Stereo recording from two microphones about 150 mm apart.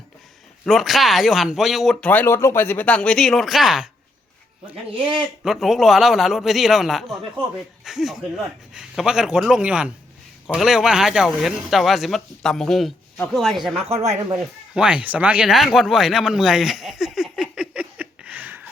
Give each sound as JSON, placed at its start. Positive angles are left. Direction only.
{"t": 0.6, "sound": "speech", "side_deg": 0}
{"t": 5.0, "sound": "speech", "side_deg": -5}
{"t": 13.8, "sound": "speech", "side_deg": -45}
{"t": 14.7, "sound": "a sound", "side_deg": -5}